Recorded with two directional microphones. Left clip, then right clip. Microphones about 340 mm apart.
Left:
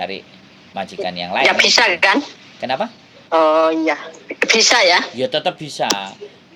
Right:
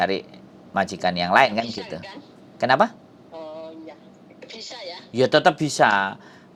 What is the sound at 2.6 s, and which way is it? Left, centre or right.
Speech, right.